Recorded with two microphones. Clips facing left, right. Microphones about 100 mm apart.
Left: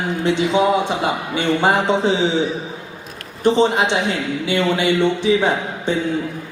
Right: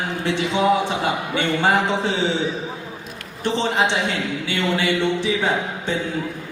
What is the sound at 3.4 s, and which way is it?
A man's voice, 15° left (ahead or behind).